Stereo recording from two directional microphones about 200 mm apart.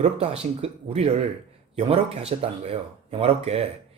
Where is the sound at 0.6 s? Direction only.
30° right (ahead or behind).